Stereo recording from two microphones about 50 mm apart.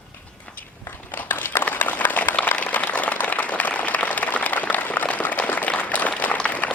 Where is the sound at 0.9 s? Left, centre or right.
Left.